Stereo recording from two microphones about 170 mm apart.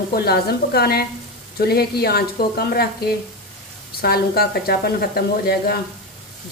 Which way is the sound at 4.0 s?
65° left (ahead or behind).